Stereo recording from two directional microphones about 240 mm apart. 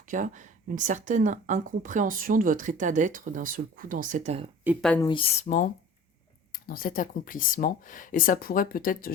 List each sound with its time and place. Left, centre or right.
0.1 s speech: right
4.6 s speech: centre
4.9 s speech: centre; by 9.1 s left